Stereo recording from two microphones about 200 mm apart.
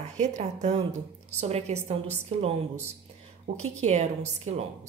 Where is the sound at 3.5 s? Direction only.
35° right (ahead or behind).